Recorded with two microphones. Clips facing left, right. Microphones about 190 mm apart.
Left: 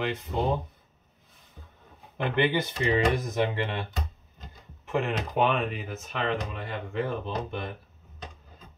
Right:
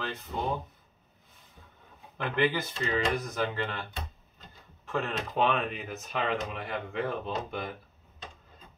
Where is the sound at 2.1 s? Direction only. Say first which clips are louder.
Left 3 dB; 20° left (ahead or behind).